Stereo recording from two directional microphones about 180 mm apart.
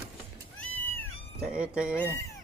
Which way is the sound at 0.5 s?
10° left (ahead or behind).